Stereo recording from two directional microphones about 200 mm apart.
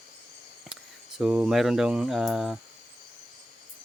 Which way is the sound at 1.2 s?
5° right (ahead or behind).